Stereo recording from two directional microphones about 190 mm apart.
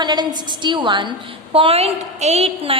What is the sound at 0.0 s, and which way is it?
A woman's voice, 20° right (ahead or behind).